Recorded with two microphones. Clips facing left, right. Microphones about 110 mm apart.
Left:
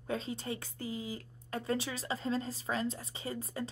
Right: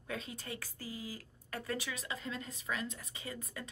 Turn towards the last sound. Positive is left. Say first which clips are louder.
# left 6 dB
turn(degrees=30)  # may be behind; listen again after turning